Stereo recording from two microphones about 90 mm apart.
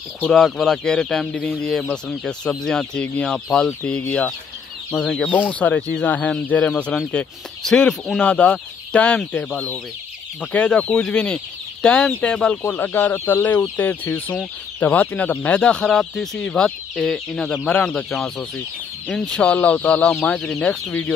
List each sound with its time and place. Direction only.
0.3 s speech: 5° left (ahead or behind)
4.9 s speech: 5° left (ahead or behind)
5.2 s speech: 15° left (ahead or behind)